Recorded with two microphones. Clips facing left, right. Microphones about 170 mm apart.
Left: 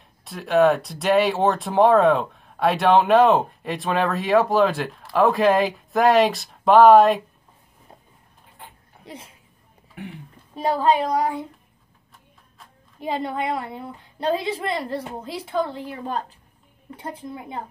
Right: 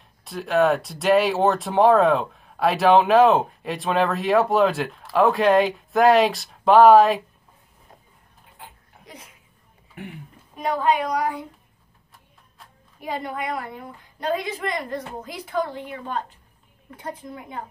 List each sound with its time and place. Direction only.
0.2 s speech: centre (ahead or behind)
9.0 s a sound: 30° left (ahead or behind)
10.5 s a woman's voice: 30° left (ahead or behind)
13.0 s a woman's voice: 25° left (ahead or behind)